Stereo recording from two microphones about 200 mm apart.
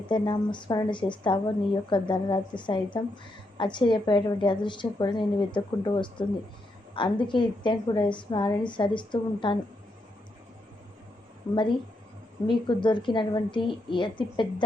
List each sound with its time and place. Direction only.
0.1 s a woman's voice: 25° left (ahead or behind)
11.5 s a woman's voice: 25° left (ahead or behind)